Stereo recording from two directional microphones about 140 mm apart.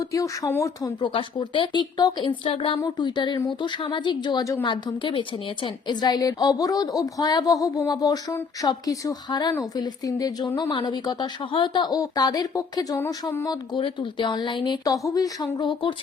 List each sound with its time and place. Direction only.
0.0 s a woman's voice: 25° left (ahead or behind)
1.0 s a woman's voice: 35° left (ahead or behind)
13.7 s speech: 35° left (ahead or behind)